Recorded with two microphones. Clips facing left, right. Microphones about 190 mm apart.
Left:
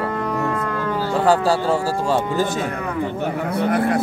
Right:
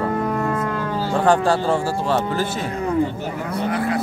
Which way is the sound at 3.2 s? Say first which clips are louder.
Left 3 dB; 55° left (ahead or behind).